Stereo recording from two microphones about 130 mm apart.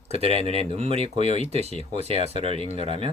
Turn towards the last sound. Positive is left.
turn(degrees=-45)  # may be behind; listen again after turning